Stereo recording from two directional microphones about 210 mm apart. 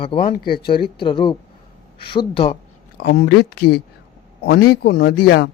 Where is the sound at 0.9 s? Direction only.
25° left (ahead or behind).